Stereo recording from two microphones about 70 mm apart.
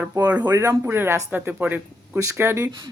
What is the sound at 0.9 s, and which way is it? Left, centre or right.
Speech, right.